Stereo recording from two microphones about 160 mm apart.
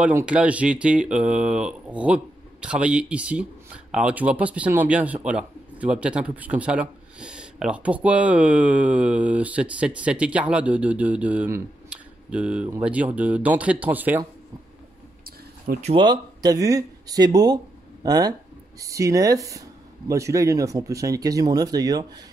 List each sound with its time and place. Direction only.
0.0 s speech: 10° right (ahead or behind)
15.2 s a sound: 70° right (ahead or behind)
15.8 s speech: 35° right (ahead or behind)